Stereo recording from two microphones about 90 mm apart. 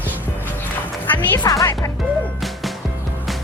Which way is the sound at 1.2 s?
45° left (ahead or behind).